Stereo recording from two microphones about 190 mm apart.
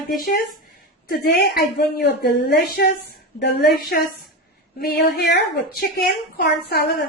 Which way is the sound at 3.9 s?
60° left (ahead or behind).